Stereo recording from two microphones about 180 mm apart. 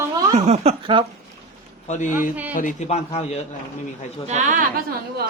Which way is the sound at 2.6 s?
40° left (ahead or behind).